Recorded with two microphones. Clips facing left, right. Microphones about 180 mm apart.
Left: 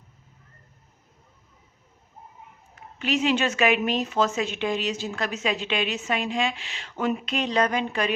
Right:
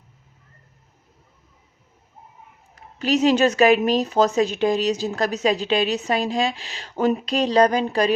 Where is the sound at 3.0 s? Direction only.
40° right (ahead or behind).